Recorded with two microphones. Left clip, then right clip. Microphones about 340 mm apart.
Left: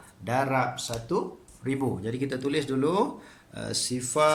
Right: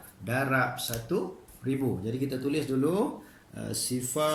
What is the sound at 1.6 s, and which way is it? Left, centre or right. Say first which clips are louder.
Speech: left 2 dB; left.